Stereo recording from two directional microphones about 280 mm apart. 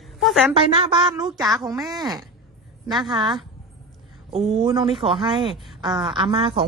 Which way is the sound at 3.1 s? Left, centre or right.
Centre.